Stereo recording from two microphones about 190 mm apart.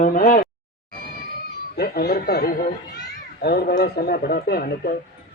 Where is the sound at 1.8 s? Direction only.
50° left (ahead or behind).